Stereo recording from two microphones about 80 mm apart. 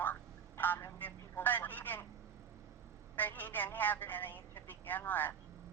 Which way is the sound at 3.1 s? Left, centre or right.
Left.